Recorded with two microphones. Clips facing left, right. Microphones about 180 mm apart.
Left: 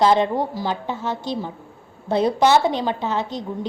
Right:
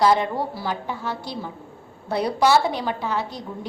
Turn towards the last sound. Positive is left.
turn(degrees=20)  # may be behind; listen again after turning